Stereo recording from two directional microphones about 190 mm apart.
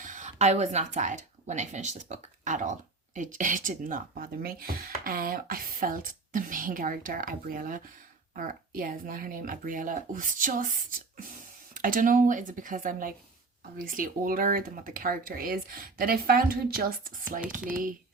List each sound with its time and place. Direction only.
0.0 s speech: 40° right (ahead or behind)